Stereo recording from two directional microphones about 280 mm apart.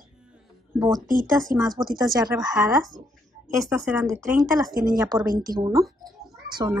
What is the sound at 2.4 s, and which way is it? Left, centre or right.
Speech, centre.